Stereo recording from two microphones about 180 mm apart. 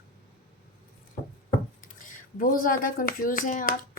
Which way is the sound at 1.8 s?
50° left (ahead or behind).